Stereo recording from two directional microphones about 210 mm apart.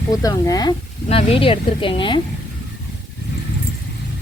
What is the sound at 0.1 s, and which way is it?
Speech, 15° left (ahead or behind).